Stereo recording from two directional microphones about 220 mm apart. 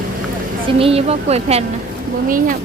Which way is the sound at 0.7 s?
25° right (ahead or behind).